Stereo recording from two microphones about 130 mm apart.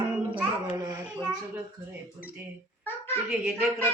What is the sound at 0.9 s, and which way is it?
Speech, 20° right (ahead or behind).